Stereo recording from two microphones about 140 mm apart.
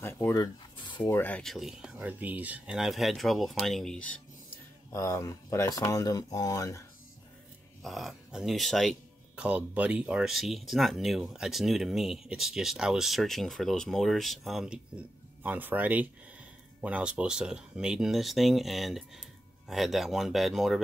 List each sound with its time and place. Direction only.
0.0 s a sound: 20° left (ahead or behind)
1.1 s speech: 10° left (ahead or behind)
4.9 s speech: 20° left (ahead or behind)
7.8 s speech: centre (ahead or behind)
9.4 s speech: 10° right (ahead or behind)